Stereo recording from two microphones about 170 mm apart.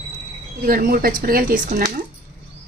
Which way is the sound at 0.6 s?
55° right (ahead or behind).